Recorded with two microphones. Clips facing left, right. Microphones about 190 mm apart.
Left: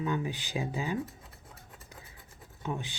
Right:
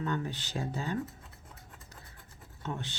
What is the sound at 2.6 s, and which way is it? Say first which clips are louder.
Speech: left 2 dB; 10° left (ahead or behind).